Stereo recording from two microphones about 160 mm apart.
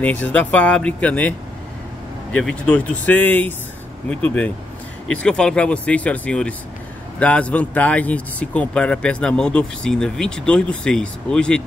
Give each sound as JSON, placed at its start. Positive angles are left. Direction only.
{"t": 0.0, "sound": "speech", "side_deg": 10}
{"t": 2.3, "sound": "speech", "side_deg": 5}